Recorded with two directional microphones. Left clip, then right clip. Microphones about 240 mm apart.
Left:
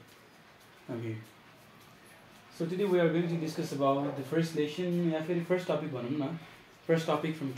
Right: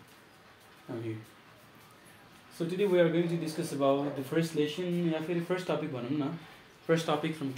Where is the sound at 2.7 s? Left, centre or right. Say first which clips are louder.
Right 2 dB; centre.